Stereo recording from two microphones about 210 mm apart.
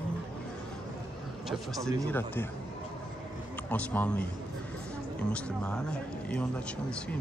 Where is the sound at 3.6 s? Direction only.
5° left (ahead or behind).